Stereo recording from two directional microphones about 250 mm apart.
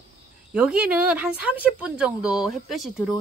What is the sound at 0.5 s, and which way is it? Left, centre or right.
Speech, centre.